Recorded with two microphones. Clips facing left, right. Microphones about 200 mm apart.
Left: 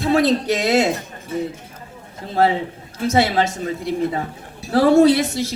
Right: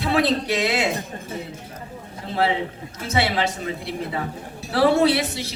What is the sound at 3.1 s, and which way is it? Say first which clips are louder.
A woman's voice: left 5 dB; 45° left (ahead or behind).